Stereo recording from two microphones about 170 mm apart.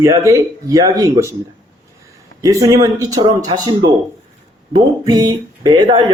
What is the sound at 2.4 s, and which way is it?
A man's voice, 20° right (ahead or behind).